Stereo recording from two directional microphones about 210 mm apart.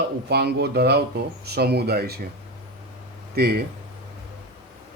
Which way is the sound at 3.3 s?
50° right (ahead or behind).